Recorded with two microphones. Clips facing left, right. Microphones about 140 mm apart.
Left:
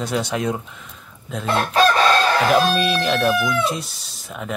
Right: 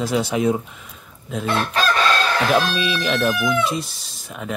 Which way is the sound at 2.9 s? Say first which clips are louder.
Left 2 dB; centre (ahead or behind).